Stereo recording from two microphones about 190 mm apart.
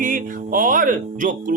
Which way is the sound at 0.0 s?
45° right (ahead or behind).